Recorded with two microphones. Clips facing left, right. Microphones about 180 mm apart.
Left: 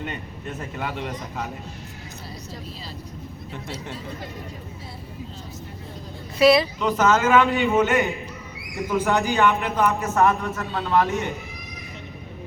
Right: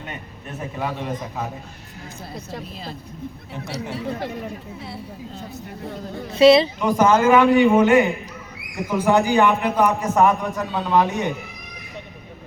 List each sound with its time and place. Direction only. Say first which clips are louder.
2.5 s speech: right 4 dB; 65° right (ahead or behind)
6.4 s speech: right 4 dB; 25° right (ahead or behind)
6.8 s a man's voice: right 3 dB; 15° right (ahead or behind)